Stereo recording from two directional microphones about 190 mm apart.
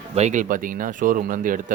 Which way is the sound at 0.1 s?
35° right (ahead or behind).